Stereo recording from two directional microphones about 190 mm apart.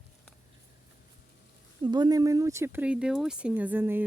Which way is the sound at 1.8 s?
20° right (ahead or behind).